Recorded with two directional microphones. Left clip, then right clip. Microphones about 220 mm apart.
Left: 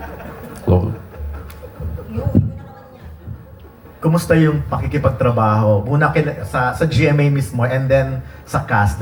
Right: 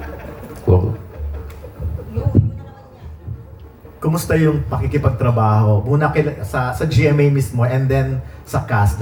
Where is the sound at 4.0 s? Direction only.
15° left (ahead or behind).